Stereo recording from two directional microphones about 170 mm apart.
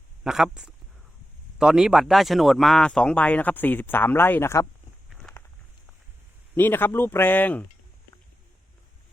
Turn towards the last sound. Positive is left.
turn(degrees=10)  # may be behind; listen again after turning